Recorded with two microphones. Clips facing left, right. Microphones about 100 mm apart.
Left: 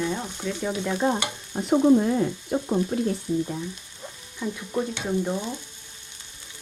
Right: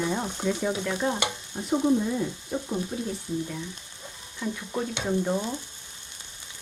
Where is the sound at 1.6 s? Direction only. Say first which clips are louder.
Left 5 dB; 65° left (ahead or behind).